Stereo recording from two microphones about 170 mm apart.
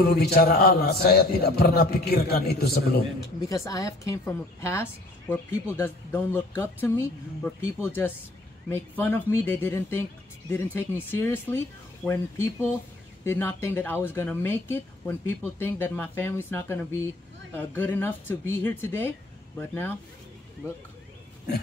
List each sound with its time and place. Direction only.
0.0 s a man's voice: 65° left (ahead or behind)
3.4 s a woman's voice: 20° left (ahead or behind)